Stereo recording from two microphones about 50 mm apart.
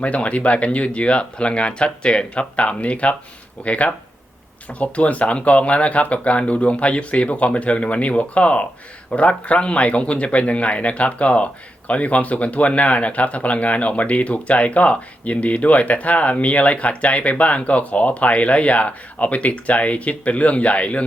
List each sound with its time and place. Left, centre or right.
0.0 s speech: left